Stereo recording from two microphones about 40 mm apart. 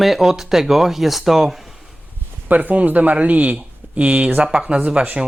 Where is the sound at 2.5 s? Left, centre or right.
Right.